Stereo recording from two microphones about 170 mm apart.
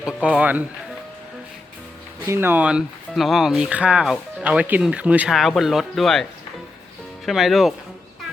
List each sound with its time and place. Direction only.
0.0 s speech: 5° right (ahead or behind)
2.2 s speech: 15° right (ahead or behind); by 6.2 s centre (ahead or behind)
7.3 s speech: centre (ahead or behind)